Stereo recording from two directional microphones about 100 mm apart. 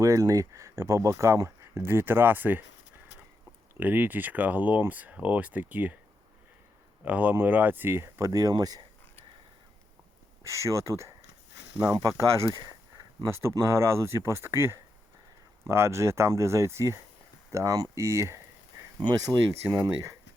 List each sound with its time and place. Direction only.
0.0 s speech: 30° right (ahead or behind)
3.8 s speech: 20° right (ahead or behind)
7.0 s speech: 15° right (ahead or behind); by 8.8 s 40° right (ahead or behind)
10.4 s speech: 30° right (ahead or behind)
18.9 s speech: 40° right (ahead or behind)